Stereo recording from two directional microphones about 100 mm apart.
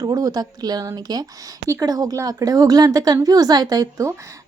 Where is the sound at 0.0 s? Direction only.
40° right (ahead or behind).